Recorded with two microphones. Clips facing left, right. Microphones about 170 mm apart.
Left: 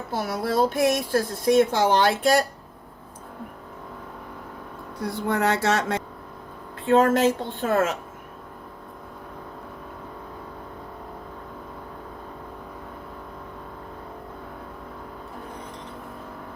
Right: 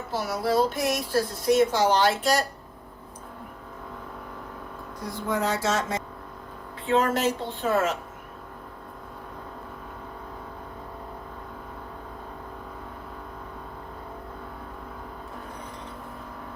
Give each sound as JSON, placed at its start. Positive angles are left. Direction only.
{"t": 0.1, "sound": "speech", "side_deg": 55}
{"t": 5.0, "sound": "a sound", "side_deg": 65}
{"t": 6.8, "sound": "speech", "side_deg": 50}